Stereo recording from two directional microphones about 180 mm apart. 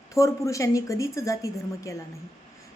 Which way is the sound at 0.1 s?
15° left (ahead or behind).